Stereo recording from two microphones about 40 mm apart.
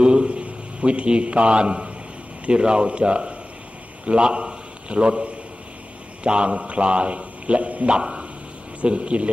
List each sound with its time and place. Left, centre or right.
0.0 s a sound: right
2.5 s a man's voice: right
7.9 s a man's voice: right